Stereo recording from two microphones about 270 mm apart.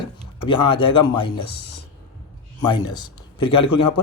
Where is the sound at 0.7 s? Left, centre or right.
Centre.